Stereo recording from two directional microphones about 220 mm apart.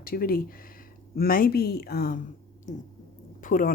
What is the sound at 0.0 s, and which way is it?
A woman's voice, 40° left (ahead or behind).